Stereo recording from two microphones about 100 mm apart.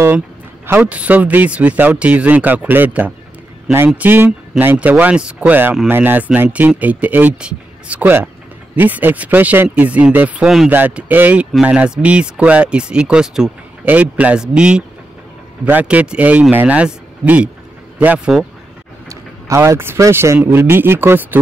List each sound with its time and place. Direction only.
0.7 s speech: 15° right (ahead or behind)
19.0 s speech: 30° right (ahead or behind)